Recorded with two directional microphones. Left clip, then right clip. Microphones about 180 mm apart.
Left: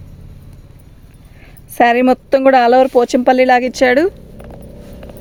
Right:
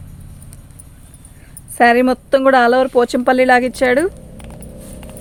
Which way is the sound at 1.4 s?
40° left (ahead or behind).